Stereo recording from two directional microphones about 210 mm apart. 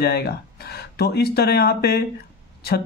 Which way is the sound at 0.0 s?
50° left (ahead or behind).